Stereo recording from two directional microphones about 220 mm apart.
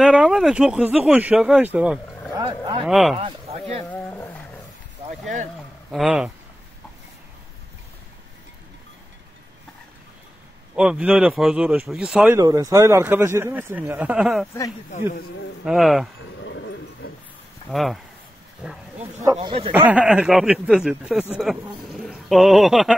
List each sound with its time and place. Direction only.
0.0 s speech: 5° right (ahead or behind)
2.3 s speech: 20° right (ahead or behind)
2.9 s speech: centre (ahead or behind)
3.2 s speech: 25° right (ahead or behind)
3.9 s roaring cats: 5° left (ahead or behind)
5.9 s speech: centre (ahead or behind)
10.8 s speech: 5° right (ahead or behind)
12.4 s speech: 15° right (ahead or behind)
15.6 s speech: centre (ahead or behind)
16.4 s dog: 55° left (ahead or behind)
17.6 s speech: centre (ahead or behind)
19.4 s speech: 25° right (ahead or behind)
19.7 s speech: 5° right (ahead or behind)